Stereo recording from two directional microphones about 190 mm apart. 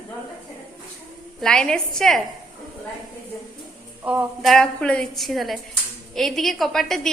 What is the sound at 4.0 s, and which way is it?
A woman's voice, 10° right (ahead or behind).